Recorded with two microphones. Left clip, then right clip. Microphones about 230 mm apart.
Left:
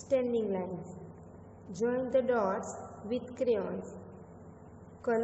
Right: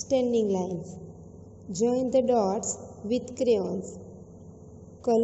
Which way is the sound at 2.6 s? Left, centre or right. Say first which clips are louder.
Right 5 dB; centre.